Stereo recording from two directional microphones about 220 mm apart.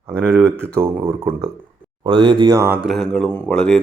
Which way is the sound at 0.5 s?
10° right (ahead or behind).